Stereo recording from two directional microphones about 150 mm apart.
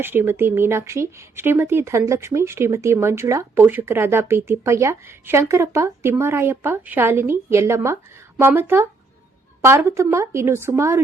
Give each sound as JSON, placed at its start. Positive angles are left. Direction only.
{"t": 0.0, "sound": "speech", "side_deg": -15}